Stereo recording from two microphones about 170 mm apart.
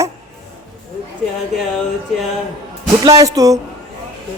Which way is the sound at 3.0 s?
20° right (ahead or behind).